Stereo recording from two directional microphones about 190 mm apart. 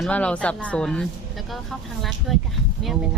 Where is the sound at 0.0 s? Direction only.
5° left (ahead or behind).